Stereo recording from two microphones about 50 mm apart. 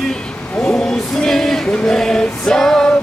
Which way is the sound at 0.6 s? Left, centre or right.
Centre.